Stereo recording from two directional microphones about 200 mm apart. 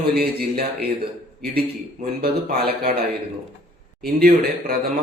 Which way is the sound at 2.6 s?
50° right (ahead or behind).